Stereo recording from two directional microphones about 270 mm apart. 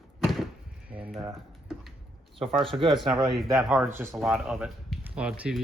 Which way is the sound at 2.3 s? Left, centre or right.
Centre.